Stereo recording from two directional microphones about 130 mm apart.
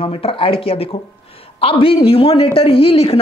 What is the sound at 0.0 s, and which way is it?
A man's voice, 45° left (ahead or behind).